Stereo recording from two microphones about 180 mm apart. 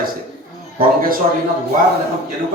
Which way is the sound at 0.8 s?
50° right (ahead or behind).